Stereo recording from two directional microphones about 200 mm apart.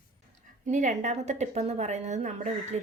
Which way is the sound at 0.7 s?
40° right (ahead or behind).